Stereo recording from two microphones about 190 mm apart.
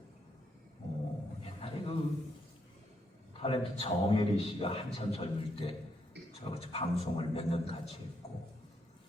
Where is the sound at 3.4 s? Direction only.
30° left (ahead or behind).